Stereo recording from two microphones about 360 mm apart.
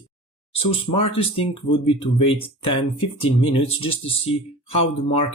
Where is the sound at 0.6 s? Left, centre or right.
Centre.